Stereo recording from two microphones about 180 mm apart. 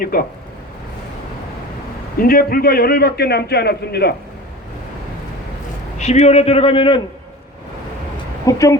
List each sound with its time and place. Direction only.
0.0 s speech: 50° left (ahead or behind)
2.1 s a man's voice: 55° left (ahead or behind)
6.0 s a man's voice: 40° left (ahead or behind)
8.4 s speech: 20° left (ahead or behind)